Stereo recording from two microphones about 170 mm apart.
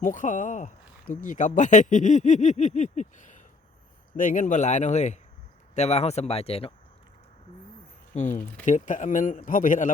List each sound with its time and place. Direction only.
0.0 s speech: 50° left (ahead or behind)
8.1 s speech: 45° left (ahead or behind)